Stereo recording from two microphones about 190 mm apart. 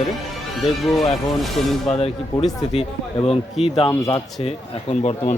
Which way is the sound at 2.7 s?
30° left (ahead or behind).